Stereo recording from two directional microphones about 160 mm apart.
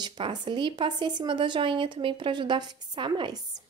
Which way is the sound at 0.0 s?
30° right (ahead or behind).